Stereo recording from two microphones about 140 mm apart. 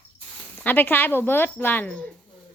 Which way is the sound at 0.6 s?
15° left (ahead or behind).